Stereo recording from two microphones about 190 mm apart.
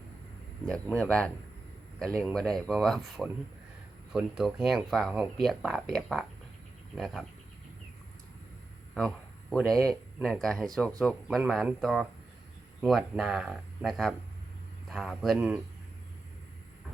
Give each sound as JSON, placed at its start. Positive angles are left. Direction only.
{"t": 0.6, "sound": "speech", "side_deg": 5}
{"t": 9.0, "sound": "speech", "side_deg": 0}